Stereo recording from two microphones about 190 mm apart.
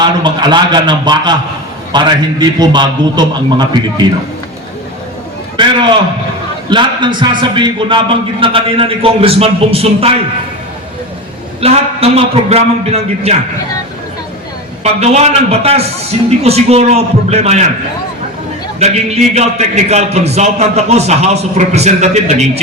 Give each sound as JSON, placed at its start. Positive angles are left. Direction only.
{"t": 0.0, "sound": "a man's voice", "side_deg": -25}
{"t": 6.7, "sound": "a man's voice", "side_deg": -25}
{"t": 11.6, "sound": "a man's voice", "side_deg": -30}
{"t": 14.8, "sound": "a man's voice", "side_deg": -35}
{"t": 18.8, "sound": "a man's voice", "side_deg": -35}